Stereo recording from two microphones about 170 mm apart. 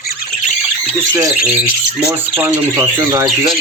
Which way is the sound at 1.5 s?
10° right (ahead or behind).